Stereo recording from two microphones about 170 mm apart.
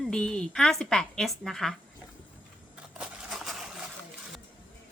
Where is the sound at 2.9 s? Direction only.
Centre (ahead or behind).